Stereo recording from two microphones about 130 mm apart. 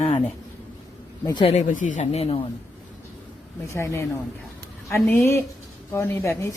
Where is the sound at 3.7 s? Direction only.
20° left (ahead or behind).